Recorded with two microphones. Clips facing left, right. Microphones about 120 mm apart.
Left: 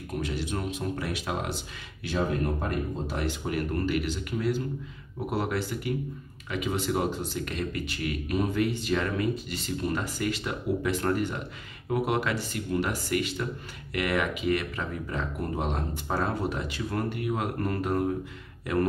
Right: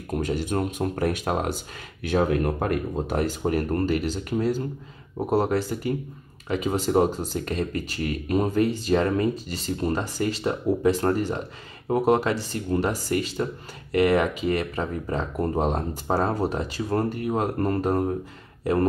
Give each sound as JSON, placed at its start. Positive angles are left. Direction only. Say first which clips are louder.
{"t": 0.1, "sound": "speech", "louder": "right 6 dB", "side_deg": -45}
{"t": 2.0, "sound": "speech", "louder": "right 6 dB", "side_deg": -60}
{"t": 3.2, "sound": "speech", "louder": "right 6 dB", "side_deg": -40}